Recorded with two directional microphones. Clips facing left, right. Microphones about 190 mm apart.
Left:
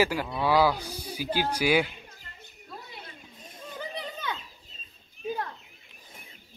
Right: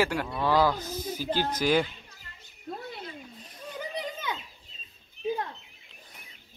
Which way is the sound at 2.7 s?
50° right (ahead or behind).